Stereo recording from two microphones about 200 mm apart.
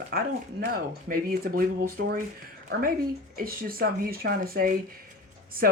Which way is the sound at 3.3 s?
45° right (ahead or behind).